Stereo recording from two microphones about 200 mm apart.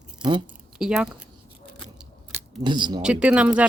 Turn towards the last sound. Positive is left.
turn(degrees=-5)  # may be behind; listen again after turning